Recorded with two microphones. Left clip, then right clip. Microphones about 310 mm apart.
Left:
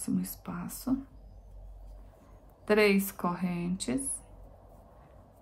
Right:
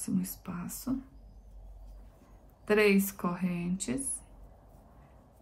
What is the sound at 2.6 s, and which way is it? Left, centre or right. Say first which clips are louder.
Speech: left 1 dB; centre.